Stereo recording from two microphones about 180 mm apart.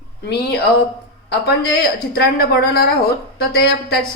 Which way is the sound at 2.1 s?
60° left (ahead or behind).